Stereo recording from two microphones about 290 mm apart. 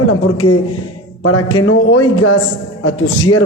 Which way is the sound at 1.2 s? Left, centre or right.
Left.